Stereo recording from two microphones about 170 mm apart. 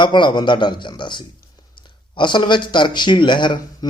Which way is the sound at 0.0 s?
25° left (ahead or behind).